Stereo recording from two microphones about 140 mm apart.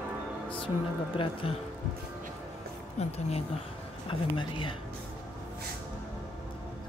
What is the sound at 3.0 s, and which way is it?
Speech, 50° left (ahead or behind).